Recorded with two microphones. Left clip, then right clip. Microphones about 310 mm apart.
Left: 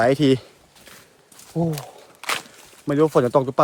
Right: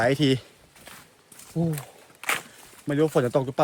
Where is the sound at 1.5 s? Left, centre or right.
Centre.